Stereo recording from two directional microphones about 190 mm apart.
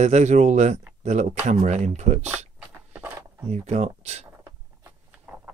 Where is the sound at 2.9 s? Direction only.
10° right (ahead or behind).